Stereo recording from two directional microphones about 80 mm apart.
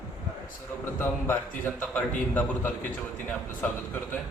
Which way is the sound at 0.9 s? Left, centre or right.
Left.